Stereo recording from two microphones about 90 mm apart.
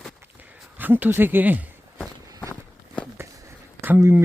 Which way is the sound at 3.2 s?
30° right (ahead or behind).